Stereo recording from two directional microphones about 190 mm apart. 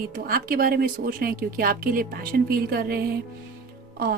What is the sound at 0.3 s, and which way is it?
Speech, 50° right (ahead or behind).